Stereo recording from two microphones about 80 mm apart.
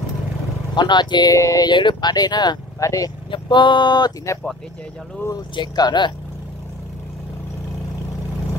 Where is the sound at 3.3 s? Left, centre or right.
Left.